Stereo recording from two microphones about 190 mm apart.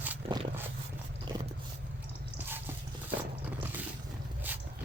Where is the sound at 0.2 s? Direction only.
30° right (ahead or behind).